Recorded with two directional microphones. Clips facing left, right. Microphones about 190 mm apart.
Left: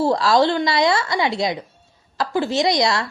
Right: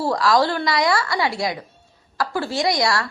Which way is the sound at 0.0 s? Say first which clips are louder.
Left 2 dB; 25° left (ahead or behind).